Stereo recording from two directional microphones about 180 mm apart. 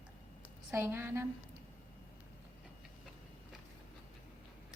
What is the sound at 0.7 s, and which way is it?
Speech, 15° right (ahead or behind).